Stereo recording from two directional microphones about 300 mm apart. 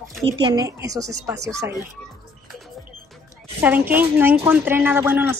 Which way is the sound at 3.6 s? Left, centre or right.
Centre.